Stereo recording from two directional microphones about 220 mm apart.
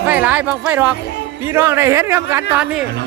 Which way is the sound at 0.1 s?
5° right (ahead or behind).